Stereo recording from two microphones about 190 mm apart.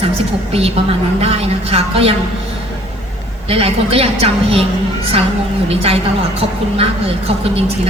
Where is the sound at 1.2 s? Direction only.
30° right (ahead or behind).